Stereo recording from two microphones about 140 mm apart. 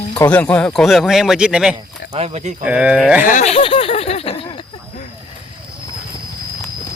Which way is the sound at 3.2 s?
60° left (ahead or behind).